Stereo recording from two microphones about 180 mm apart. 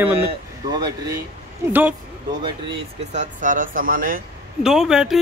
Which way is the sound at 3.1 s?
45° right (ahead or behind).